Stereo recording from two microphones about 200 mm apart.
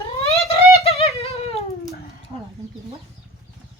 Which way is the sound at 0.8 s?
30° left (ahead or behind).